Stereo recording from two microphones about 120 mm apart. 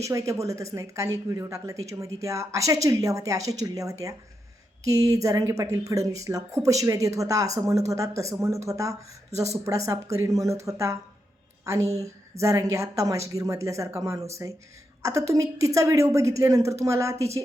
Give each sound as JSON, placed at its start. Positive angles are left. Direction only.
{"t": 0.0, "sound": "speech", "side_deg": -25}